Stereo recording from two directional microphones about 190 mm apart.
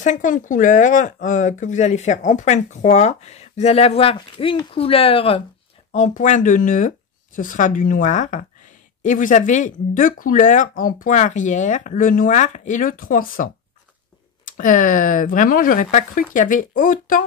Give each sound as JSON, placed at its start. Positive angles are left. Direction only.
{"t": 0.0, "sound": "speech", "side_deg": 40}